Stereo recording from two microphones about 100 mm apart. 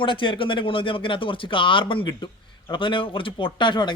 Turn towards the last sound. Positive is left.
turn(degrees=50)  # may be behind; listen again after turning